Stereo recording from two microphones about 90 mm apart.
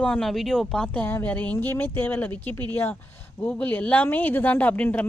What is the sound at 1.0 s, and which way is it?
Speech, 20° left (ahead or behind).